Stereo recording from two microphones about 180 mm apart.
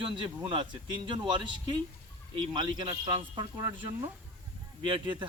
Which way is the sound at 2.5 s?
25° right (ahead or behind).